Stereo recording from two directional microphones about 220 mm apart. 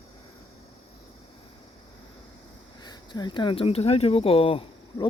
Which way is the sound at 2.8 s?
20° left (ahead or behind).